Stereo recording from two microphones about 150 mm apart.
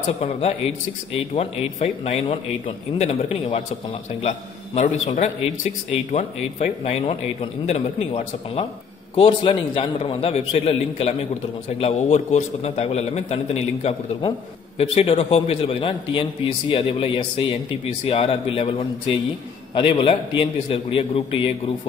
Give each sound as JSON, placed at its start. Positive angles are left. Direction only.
{"t": 0.2, "sound": "a man's voice", "side_deg": 40}